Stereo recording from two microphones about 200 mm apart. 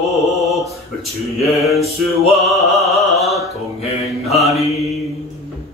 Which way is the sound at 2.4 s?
Centre (ahead or behind).